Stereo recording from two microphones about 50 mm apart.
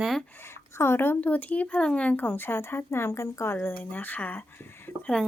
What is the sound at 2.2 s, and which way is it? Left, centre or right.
Speech, left.